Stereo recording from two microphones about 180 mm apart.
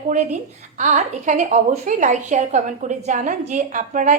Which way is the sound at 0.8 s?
40° right (ahead or behind).